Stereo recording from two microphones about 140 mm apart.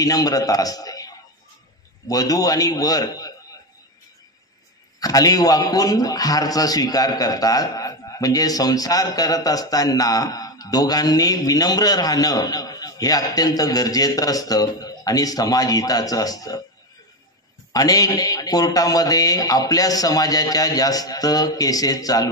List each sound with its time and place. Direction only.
0.0 s a man's voice: 25° left (ahead or behind)
5.0 s a man's voice: 25° left (ahead or behind)
17.7 s a man's voice: 25° left (ahead or behind)